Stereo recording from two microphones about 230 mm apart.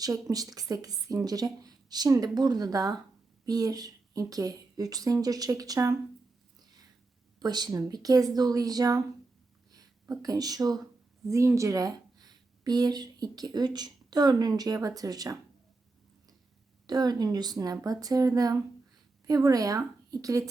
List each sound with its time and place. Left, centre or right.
0.0 s a woman's voice: centre
7.3 s a woman's voice: centre
16.8 s a woman's voice: centre